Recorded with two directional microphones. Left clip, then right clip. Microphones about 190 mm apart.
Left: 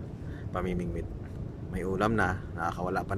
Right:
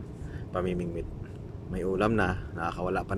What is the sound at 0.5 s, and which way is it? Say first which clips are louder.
A man's voice: right 3 dB; 5° right (ahead or behind).